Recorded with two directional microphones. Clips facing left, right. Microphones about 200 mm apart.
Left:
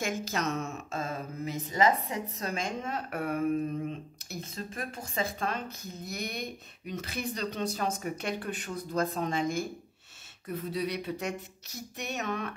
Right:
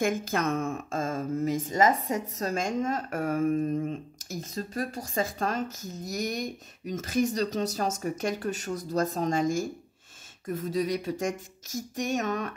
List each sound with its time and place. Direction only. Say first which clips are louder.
0.0 s speech: right 5 dB; 55° right (ahead or behind)